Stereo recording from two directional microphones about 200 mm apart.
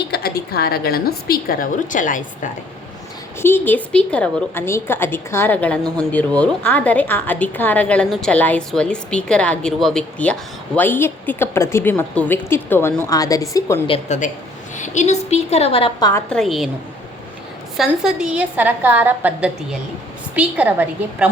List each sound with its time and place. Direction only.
0.1 s a sound: 50° left (ahead or behind)
0.5 s a woman's voice: 50° left (ahead or behind)
3.4 s a woman's voice: 10° left (ahead or behind)
13.8 s a woman's voice: 25° left (ahead or behind)
16.3 s a woman's voice: centre (ahead or behind)
17.7 s a woman's voice: 5° right (ahead or behind)